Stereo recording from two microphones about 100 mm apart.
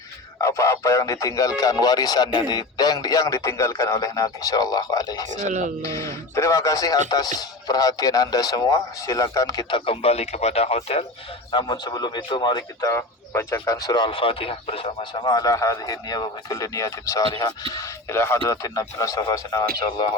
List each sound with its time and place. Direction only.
0.4 s speech: 30° left (ahead or behind)
9.6 s speech: 55° left (ahead or behind); by 11.0 s 90° left
11.5 s a man's voice: 45° left (ahead or behind)
12.9 s speech: 30° left (ahead or behind)
13.8 s a man's voice: 45° left (ahead or behind)
14.1 s speech: 65° left (ahead or behind)
15.1 s speech: 45° left (ahead or behind)